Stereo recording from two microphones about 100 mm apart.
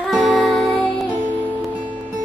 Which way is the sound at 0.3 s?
5° left (ahead or behind).